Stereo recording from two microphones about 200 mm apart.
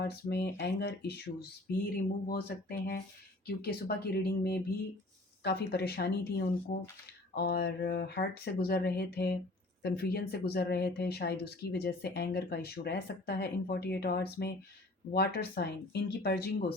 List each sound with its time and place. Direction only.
0.0 s speech: 55° left (ahead or behind)